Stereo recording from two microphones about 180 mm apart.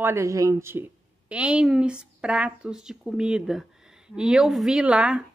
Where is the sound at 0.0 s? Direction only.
15° right (ahead or behind).